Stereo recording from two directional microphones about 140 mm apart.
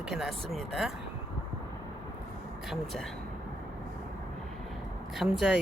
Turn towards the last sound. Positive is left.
turn(degrees=-5)  # may be behind; listen again after turning